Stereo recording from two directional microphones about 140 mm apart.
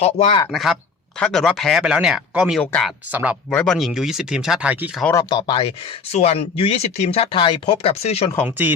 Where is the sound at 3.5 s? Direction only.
5° left (ahead or behind); by 4.9 s 10° right (ahead or behind).